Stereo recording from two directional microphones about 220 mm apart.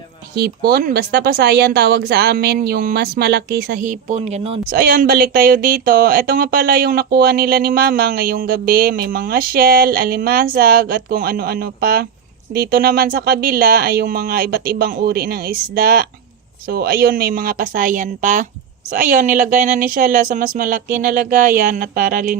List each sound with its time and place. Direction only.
0.3 s speech: 45° right (ahead or behind); by 4.6 s 30° right (ahead or behind)
4.6 s speech: 40° right (ahead or behind)